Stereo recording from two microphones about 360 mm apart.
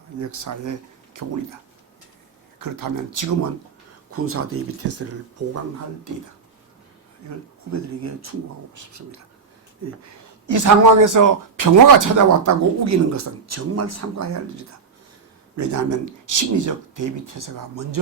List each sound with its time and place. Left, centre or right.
0.2 s a man's voice: right
2.6 s speech: right
4.1 s speech: right
7.2 s a man's voice: right
10.4 s a man's voice: right